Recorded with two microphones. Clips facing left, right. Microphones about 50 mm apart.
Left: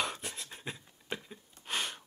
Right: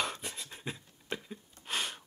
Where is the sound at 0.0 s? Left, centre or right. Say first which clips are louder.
Even; centre.